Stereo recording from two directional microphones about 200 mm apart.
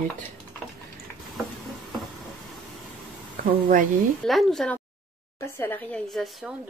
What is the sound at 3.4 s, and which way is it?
Speech, 45° right (ahead or behind).